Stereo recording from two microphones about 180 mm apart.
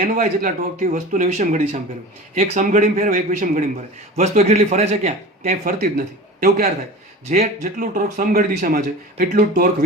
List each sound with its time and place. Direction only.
0.0 s a man's voice: 45° right (ahead or behind)
5.5 s speech: 55° right (ahead or behind)
7.3 s a man's voice: 40° right (ahead or behind)
7.8 s speech: 50° right (ahead or behind)